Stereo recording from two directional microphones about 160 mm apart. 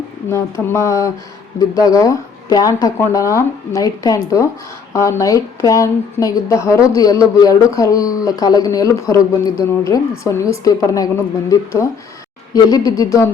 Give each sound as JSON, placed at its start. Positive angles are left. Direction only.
{"t": 0.3, "sound": "a woman's voice", "side_deg": 15}